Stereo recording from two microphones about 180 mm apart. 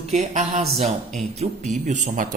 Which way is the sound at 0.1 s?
40° right (ahead or behind).